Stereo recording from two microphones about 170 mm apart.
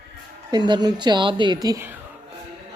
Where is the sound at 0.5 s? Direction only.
25° right (ahead or behind).